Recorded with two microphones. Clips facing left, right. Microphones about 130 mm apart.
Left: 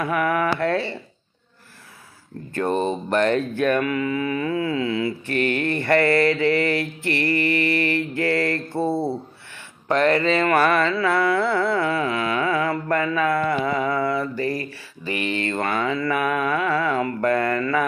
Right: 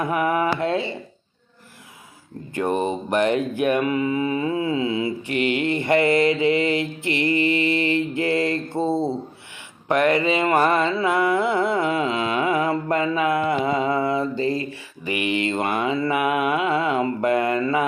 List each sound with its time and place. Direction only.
0.0 s mantra: 20° right (ahead or behind)
2.5 s mantra: 15° right (ahead or behind)
9.8 s music: 15° right (ahead or behind)